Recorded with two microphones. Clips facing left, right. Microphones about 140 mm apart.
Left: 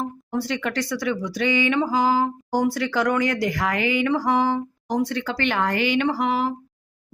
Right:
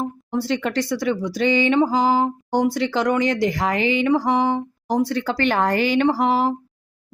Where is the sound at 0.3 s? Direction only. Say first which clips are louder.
Right 3 dB; 30° right (ahead or behind).